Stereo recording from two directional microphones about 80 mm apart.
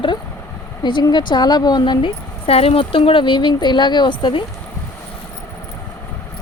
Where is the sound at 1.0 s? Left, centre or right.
Left.